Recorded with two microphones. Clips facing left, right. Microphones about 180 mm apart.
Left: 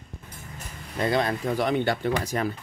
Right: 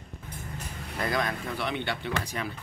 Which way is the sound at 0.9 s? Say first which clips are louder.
Left 5 dB; 30° left (ahead or behind).